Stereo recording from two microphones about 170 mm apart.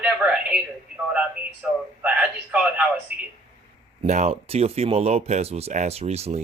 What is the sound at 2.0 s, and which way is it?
A man's voice, 5° right (ahead or behind).